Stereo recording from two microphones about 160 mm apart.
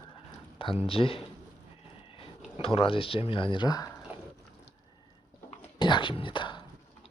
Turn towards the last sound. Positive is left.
turn(degrees=30)  # may be behind; listen again after turning